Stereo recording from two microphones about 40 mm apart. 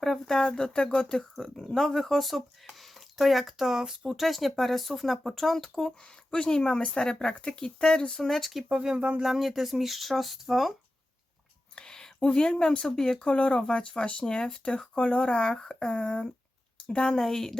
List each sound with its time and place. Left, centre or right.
0.0 s speech: centre
0.3 s speech: centre
6.0 s speech: left
8.2 s speech: centre
8.7 s speech: centre
9.0 s speech: right
9.2 s speech: centre
11.7 s a sound: centre
12.2 s speech: left
13.2 s a woman's voice: left
17.2 s a woman's voice: centre